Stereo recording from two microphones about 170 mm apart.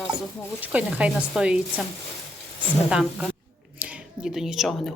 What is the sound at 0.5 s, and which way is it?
Speech, 10° right (ahead or behind).